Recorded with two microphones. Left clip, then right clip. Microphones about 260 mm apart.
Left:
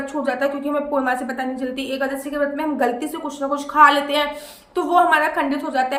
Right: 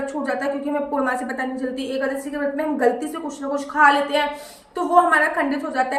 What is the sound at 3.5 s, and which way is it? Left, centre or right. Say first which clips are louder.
A woman's voice: left 2 dB; centre.